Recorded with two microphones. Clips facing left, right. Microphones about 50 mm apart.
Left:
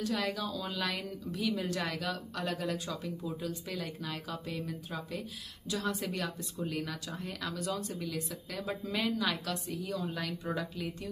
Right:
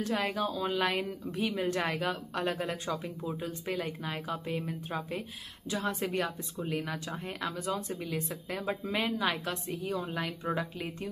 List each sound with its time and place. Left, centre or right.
0.0 s speech: right